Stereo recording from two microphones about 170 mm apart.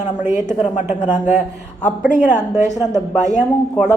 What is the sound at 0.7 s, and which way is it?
Speech, 50° left (ahead or behind).